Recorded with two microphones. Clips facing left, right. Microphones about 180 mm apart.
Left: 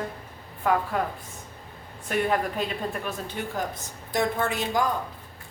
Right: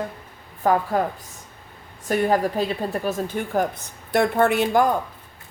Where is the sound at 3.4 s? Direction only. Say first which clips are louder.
Right 5 dB; 50° right (ahead or behind).